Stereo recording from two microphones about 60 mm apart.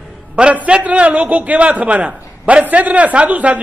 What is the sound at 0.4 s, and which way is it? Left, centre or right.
A man's voice, centre.